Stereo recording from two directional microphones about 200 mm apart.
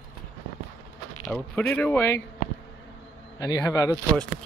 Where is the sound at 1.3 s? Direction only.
5° left (ahead or behind).